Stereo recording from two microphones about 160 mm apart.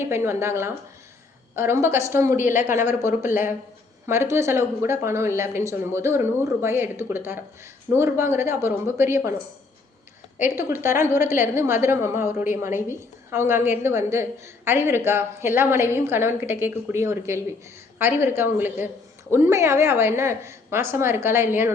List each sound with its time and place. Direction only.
0.0 s a woman's voice: 15° right (ahead or behind)
10.6 s a woman's voice: 15° right (ahead or behind)